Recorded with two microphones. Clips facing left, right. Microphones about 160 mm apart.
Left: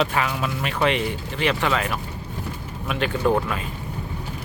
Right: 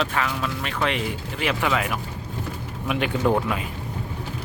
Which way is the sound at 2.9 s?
15° right (ahead or behind).